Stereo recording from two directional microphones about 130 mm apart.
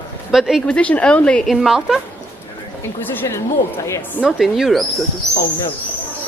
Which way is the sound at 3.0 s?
15° left (ahead or behind).